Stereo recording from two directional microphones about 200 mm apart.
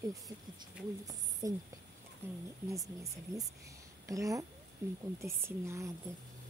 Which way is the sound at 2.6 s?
15° right (ahead or behind).